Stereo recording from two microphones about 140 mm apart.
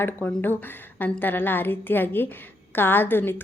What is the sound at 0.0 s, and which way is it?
A woman's voice, 15° left (ahead or behind).